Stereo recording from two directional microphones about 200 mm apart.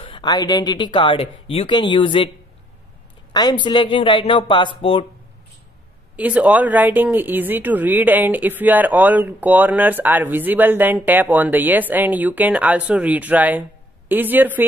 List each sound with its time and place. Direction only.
0.0 s speech: 25° left (ahead or behind)
3.3 s speech: 20° left (ahead or behind)
6.1 s speech: 5° right (ahead or behind)